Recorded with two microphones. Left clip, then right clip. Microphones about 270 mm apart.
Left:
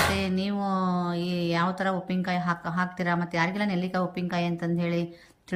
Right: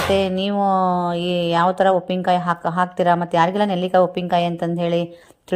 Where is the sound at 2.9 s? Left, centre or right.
Centre.